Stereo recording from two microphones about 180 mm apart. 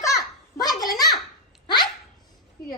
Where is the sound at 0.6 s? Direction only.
20° left (ahead or behind).